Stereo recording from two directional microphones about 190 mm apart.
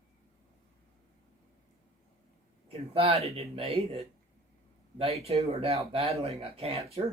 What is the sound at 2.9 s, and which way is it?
Speech, 30° right (ahead or behind).